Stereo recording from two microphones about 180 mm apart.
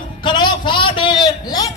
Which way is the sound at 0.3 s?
25° left (ahead or behind).